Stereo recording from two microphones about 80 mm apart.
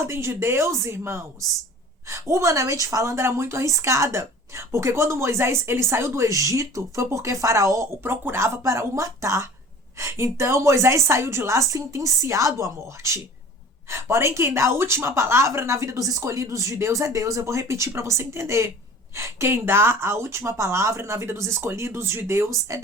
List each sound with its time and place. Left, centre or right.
0.0 s a woman's voice: right